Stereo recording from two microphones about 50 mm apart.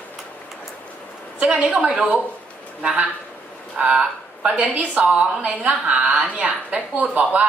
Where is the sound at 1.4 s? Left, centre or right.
Right.